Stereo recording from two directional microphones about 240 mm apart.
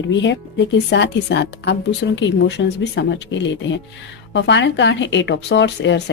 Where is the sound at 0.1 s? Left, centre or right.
Left.